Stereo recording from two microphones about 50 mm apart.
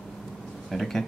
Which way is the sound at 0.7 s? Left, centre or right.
Centre.